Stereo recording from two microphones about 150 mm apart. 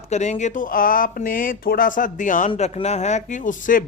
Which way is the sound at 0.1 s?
50° left (ahead or behind).